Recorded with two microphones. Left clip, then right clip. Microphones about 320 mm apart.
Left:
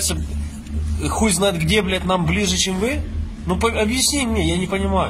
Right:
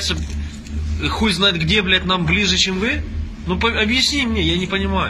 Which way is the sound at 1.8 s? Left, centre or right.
Centre.